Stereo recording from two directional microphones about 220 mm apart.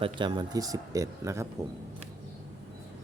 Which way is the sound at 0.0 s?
20° right (ahead or behind).